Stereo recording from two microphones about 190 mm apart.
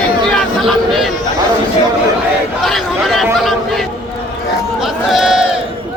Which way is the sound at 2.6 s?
Centre (ahead or behind).